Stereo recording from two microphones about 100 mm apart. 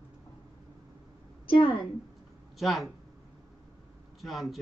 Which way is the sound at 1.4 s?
60° left (ahead or behind).